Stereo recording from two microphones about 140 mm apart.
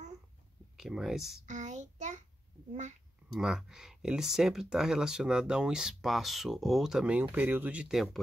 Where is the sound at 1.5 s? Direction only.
55° right (ahead or behind).